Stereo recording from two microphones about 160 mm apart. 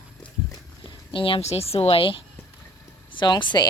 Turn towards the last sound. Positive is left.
turn(degrees=30)  # may be behind; listen again after turning